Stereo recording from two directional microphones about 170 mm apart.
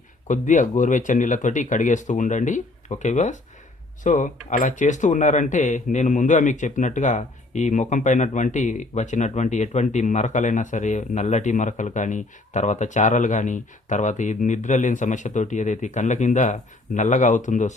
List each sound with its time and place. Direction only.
0.3 s speech: 45° left (ahead or behind)